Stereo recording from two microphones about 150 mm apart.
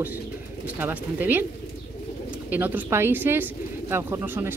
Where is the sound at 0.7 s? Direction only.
15° right (ahead or behind).